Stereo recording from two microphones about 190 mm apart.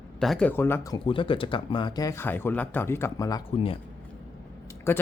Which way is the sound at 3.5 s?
30° left (ahead or behind).